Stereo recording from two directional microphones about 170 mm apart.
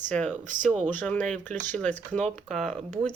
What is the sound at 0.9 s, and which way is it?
Speech, 10° left (ahead or behind).